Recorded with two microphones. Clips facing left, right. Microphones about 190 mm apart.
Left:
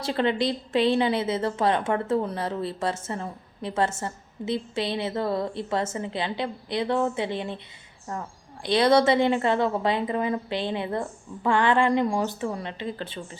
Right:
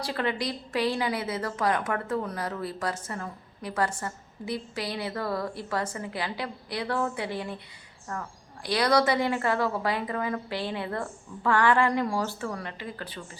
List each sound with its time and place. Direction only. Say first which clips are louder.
0.0 s a woman's voice: left 5 dB; 25° left (ahead or behind)